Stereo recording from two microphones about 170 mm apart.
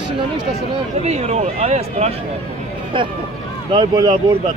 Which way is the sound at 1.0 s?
40° right (ahead or behind).